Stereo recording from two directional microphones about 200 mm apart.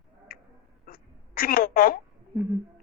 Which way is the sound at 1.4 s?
45° left (ahead or behind).